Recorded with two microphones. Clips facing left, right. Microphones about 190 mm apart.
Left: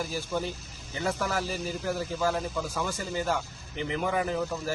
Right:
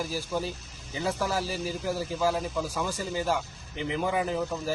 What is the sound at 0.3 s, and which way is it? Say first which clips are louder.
Speech: even; 10° right (ahead or behind).